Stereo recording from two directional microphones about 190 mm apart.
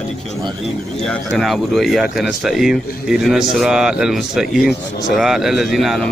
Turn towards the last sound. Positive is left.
turn(degrees=0)  # may be behind; listen again after turning